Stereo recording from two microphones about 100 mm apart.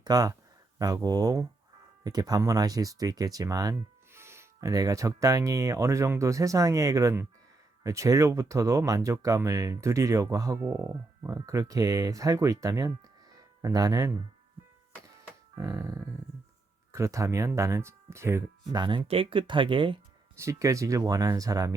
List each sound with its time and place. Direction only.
0.0 s speech: 40° right (ahead or behind)
4.1 s speech: 25° right (ahead or behind)
15.5 s speech: 35° right (ahead or behind)
18.7 s speech: 50° right (ahead or behind)
19.0 s speech: 65° right (ahead or behind)
20.3 s speech: 30° right (ahead or behind)